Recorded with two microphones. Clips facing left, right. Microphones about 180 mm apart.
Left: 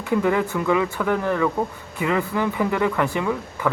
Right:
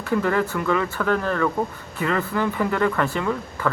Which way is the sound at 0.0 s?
15° left (ahead or behind).